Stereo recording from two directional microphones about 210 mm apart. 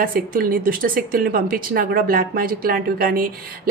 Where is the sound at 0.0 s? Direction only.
45° right (ahead or behind).